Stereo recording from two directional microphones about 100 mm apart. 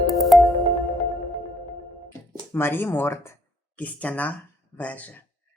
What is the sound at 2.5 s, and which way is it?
Speech, 20° left (ahead or behind).